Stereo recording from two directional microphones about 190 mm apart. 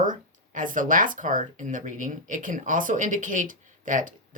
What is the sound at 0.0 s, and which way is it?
Speech, 45° right (ahead or behind).